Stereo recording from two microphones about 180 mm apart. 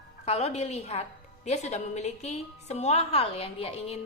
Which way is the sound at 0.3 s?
35° left (ahead or behind).